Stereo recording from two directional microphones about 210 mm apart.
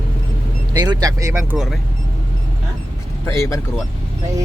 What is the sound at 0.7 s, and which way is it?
Speech, 20° right (ahead or behind).